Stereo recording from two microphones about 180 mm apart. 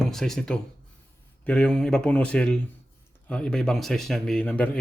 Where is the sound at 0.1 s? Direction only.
Centre (ahead or behind).